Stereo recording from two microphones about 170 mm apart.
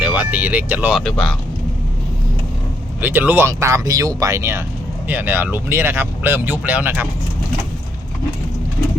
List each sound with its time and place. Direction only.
0.0 s speech: 10° right (ahead or behind)
1.0 s speech: 5° left (ahead or behind)
3.0 s speech: 10° right (ahead or behind)